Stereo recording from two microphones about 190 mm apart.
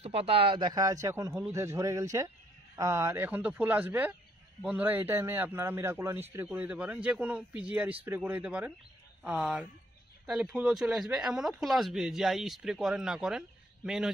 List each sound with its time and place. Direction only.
0.0 s speech: 30° right (ahead or behind); by 14.1 s 5° right (ahead or behind)